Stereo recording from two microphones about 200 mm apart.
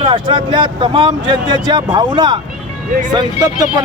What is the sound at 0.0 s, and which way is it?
Speech, 25° right (ahead or behind).